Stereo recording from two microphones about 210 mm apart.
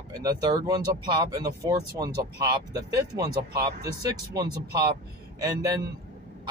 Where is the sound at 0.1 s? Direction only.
15° right (ahead or behind).